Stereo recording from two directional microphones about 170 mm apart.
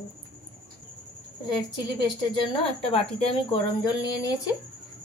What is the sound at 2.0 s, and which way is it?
A woman's voice, 30° left (ahead or behind).